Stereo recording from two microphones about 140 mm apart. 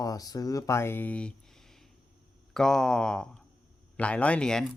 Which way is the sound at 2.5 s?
5° left (ahead or behind).